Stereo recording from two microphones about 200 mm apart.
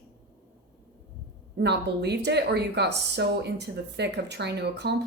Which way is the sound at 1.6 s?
55° right (ahead or behind).